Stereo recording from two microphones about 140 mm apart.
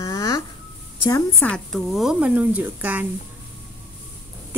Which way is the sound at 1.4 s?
5° left (ahead or behind).